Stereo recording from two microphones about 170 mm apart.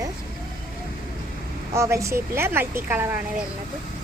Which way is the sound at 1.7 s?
15° right (ahead or behind).